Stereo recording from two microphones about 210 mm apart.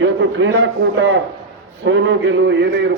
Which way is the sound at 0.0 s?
65° right (ahead or behind).